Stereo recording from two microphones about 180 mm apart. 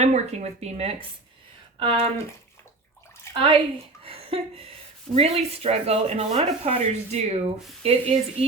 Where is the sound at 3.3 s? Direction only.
15° left (ahead or behind).